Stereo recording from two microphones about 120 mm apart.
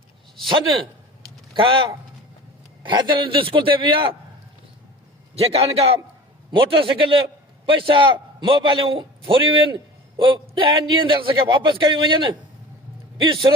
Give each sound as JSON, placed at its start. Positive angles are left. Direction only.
{"t": 1.5, "sound": "a man's voice", "side_deg": -45}
{"t": 5.3, "sound": "a man's voice", "side_deg": -60}
{"t": 6.5, "sound": "a man's voice", "side_deg": -45}